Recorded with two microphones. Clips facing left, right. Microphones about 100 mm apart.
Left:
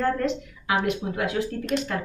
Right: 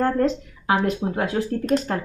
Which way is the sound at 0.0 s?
35° right (ahead or behind).